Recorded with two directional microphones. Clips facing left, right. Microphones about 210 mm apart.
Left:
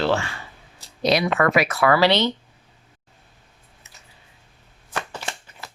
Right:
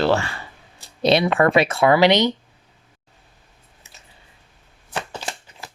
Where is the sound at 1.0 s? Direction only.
25° right (ahead or behind).